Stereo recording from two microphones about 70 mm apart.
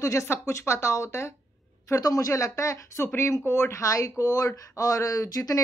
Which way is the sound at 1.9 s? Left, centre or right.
Left.